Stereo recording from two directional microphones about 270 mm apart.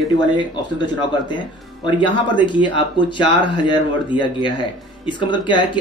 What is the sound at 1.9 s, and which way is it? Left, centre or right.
Speech, centre.